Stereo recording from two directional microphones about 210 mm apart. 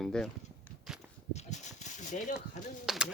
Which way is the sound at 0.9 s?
5° right (ahead or behind).